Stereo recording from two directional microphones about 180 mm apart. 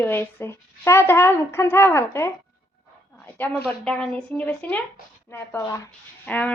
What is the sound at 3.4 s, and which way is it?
A woman's voice, 10° left (ahead or behind).